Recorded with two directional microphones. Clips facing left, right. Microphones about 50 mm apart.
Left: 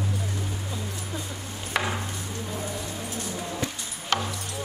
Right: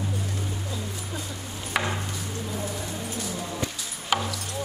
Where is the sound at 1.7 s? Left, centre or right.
Centre.